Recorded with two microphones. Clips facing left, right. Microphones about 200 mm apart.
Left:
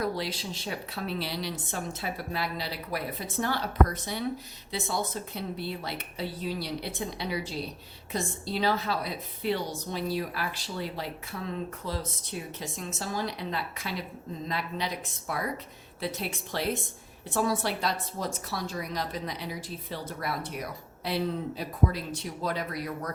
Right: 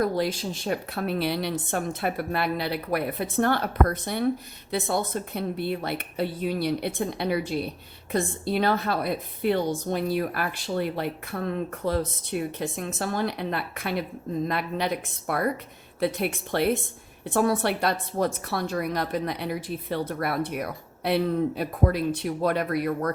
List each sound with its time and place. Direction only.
0.0 s a woman's voice: 50° right (ahead or behind)